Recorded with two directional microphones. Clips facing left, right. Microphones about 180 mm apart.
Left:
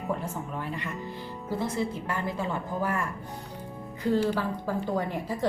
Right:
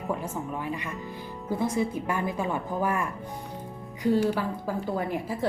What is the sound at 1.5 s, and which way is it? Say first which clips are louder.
A woman's voice: right 3 dB; 20° right (ahead or behind).